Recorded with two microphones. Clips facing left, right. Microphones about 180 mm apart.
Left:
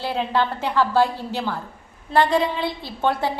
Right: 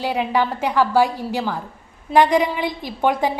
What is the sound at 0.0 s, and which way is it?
A woman's voice, 10° right (ahead or behind).